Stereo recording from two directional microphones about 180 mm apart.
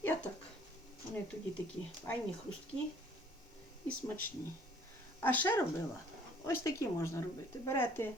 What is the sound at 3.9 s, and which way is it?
Speech, 10° left (ahead or behind).